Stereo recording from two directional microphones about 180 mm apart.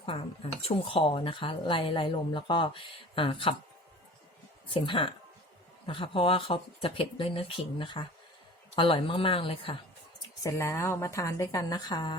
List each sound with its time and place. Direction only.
0.0 s speech: 30° left (ahead or behind)
4.7 s speech: 30° left (ahead or behind)
10.4 s a woman's voice: 15° left (ahead or behind)